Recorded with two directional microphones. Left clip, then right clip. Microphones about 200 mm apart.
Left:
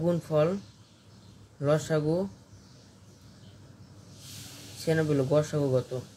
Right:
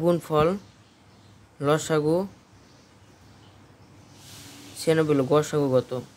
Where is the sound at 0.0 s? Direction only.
50° right (ahead or behind).